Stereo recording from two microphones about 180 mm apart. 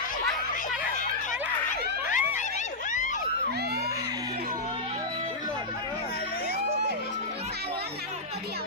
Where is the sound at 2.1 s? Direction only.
45° left (ahead or behind).